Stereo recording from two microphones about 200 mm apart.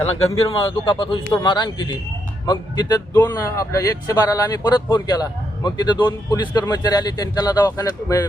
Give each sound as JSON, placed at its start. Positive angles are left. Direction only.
{"t": 0.3, "sound": "speech", "side_deg": 25}